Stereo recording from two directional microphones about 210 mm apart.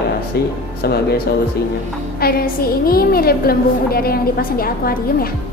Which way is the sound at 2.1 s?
45° left (ahead or behind).